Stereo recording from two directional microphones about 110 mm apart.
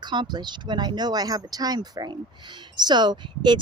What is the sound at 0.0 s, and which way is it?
Speech, 45° right (ahead or behind).